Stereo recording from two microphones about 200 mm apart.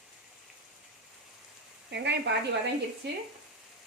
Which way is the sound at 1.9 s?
60° right (ahead or behind).